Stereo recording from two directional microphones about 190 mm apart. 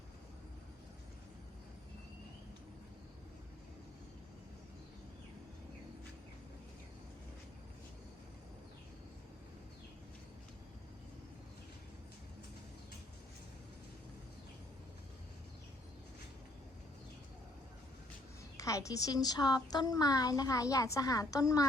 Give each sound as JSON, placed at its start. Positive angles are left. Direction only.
{"t": 18.5, "sound": "a woman's voice", "side_deg": 15}